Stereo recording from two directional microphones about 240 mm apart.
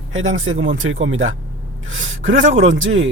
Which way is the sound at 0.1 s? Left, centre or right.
Right.